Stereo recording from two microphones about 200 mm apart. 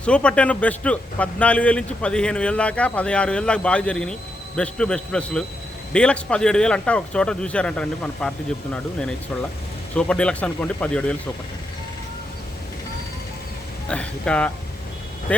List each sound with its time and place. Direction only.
0.0 s a man's voice: 5° left (ahead or behind)
13.9 s speech: 5° left (ahead or behind)